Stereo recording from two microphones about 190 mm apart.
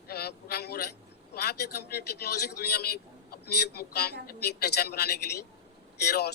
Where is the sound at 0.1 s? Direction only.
55° left (ahead or behind).